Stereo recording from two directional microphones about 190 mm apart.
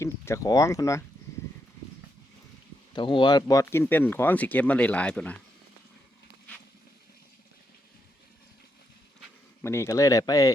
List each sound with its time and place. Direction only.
0.0 s speech: 15° left (ahead or behind)
2.9 s speech: 25° left (ahead or behind); by 5.4 s 5° left (ahead or behind)
9.6 s speech: 15° left (ahead or behind)